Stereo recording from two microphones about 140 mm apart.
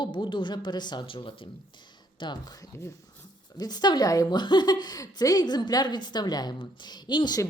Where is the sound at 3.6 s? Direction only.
30° left (ahead or behind).